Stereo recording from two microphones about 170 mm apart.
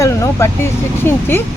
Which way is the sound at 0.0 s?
20° left (ahead or behind).